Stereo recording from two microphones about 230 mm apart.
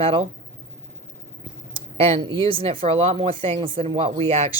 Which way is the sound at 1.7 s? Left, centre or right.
Right.